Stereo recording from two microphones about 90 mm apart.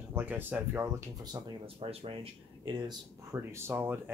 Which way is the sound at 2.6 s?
55° right (ahead or behind).